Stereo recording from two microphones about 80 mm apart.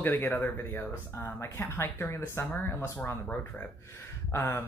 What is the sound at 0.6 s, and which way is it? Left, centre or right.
Speech, left.